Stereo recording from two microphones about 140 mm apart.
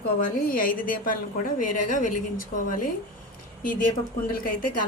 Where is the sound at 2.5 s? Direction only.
90° left.